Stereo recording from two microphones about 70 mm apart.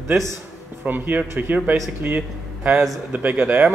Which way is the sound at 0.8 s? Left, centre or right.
Right.